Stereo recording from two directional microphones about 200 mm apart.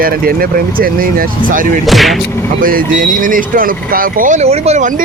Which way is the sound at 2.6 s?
45° right (ahead or behind).